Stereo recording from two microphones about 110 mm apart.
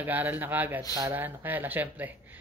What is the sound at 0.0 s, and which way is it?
Speech, 15° right (ahead or behind).